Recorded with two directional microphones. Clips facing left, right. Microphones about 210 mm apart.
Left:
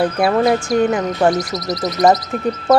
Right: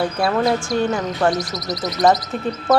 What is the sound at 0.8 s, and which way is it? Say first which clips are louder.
Speech: left 4 dB; 20° left (ahead or behind).